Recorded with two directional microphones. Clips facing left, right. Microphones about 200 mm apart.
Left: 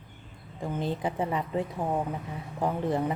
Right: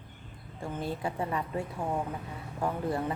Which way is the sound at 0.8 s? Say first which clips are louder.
Left 3 dB; 20° left (ahead or behind).